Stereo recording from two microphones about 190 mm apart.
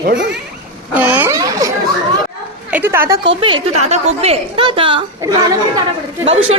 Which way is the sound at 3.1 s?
70° right (ahead or behind).